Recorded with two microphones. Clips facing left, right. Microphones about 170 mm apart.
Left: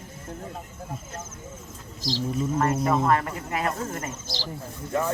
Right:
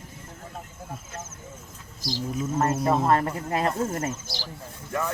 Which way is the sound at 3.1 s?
30° right (ahead or behind).